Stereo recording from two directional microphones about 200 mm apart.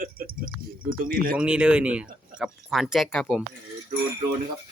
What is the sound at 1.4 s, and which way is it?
Speech, 5° right (ahead or behind).